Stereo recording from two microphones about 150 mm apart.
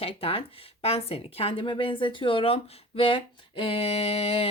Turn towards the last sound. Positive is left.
turn(degrees=40)  # may be behind; listen again after turning